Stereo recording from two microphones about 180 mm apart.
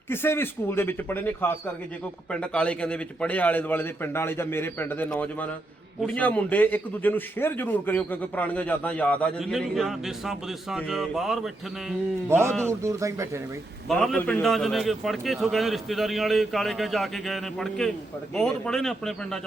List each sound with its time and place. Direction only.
0.1 s a man's voice: 10° left (ahead or behind)
12.3 s a man's voice: 15° right (ahead or behind)
13.8 s a man's voice: centre (ahead or behind)